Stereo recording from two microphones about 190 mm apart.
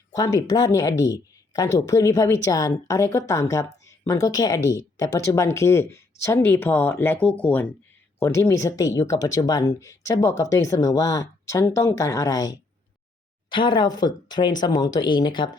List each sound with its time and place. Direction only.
0.1 s speech: 20° left (ahead or behind)